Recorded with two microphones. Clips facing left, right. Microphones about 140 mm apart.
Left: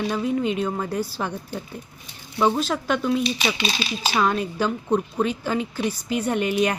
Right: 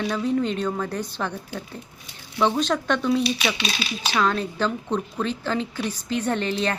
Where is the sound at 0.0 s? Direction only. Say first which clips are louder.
Even; 5° left (ahead or behind).